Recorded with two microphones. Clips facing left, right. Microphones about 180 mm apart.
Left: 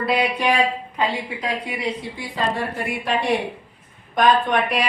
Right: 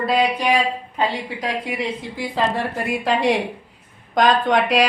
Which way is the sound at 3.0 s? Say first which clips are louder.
Right 2 dB; 90° right.